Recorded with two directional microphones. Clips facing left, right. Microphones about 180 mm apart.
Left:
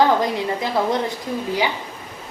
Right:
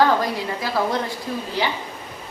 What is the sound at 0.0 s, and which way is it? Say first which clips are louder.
Speech: left 1 dB; 20° left (ahead or behind).